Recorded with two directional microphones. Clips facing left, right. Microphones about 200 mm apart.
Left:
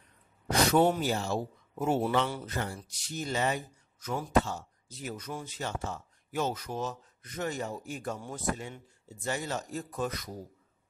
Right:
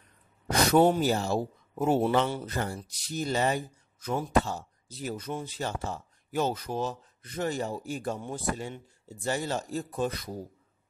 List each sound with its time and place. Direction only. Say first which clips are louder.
0.5 s speech: right 3 dB; 40° right (ahead or behind)